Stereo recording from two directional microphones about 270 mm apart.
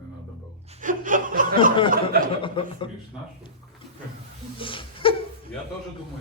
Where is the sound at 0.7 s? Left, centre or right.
Right.